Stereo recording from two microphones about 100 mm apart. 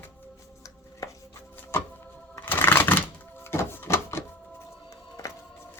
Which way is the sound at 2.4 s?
20° left (ahead or behind).